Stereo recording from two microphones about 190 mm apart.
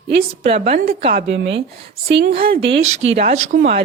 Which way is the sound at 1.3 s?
70° right (ahead or behind).